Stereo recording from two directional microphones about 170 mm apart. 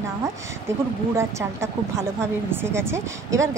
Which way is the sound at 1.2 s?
15° right (ahead or behind).